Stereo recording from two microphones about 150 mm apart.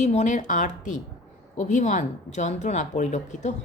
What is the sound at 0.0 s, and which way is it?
A woman's voice, 50° left (ahead or behind).